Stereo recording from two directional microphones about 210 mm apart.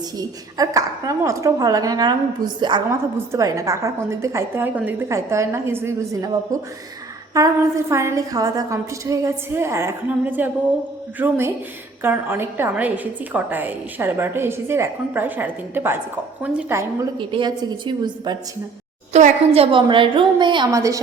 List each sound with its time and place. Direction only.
0.2 s a woman's voice: 15° right (ahead or behind)
19.1 s a woman's voice: 30° right (ahead or behind); by 21.0 s 15° right (ahead or behind)